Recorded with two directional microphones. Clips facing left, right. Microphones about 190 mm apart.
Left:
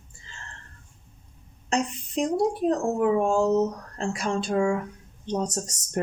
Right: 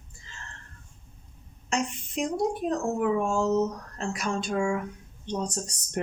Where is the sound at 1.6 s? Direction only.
35° left (ahead or behind).